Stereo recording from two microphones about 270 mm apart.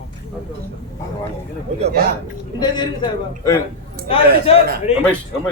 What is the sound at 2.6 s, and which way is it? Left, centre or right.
A man's voice, centre.